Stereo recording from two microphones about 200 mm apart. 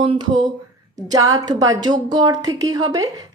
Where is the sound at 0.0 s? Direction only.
25° right (ahead or behind).